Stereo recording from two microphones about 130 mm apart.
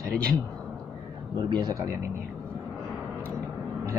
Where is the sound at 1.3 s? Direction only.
30° right (ahead or behind).